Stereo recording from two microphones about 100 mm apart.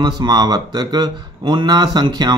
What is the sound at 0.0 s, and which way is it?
Speech, 45° right (ahead or behind).